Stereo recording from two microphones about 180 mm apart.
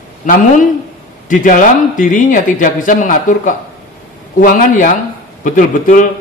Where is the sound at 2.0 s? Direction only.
45° left (ahead or behind).